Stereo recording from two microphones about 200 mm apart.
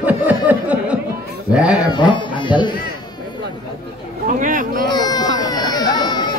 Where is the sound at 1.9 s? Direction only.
25° left (ahead or behind).